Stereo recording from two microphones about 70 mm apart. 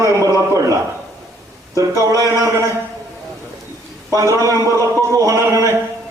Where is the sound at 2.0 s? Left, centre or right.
Right.